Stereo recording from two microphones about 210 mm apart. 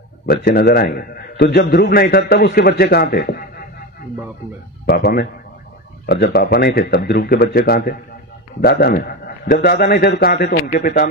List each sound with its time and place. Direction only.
0.3 s a man's voice: 50° left (ahead or behind)
4.8 s a man's voice: 50° left (ahead or behind)